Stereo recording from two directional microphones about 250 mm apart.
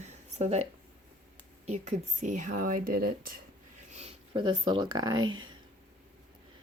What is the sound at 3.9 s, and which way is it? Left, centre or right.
Speech, right.